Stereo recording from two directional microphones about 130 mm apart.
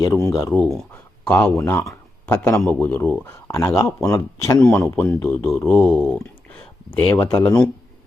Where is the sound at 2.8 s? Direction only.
15° left (ahead or behind).